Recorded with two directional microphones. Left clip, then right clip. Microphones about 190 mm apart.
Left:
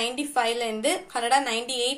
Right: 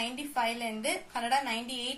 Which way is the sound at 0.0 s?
30° left (ahead or behind).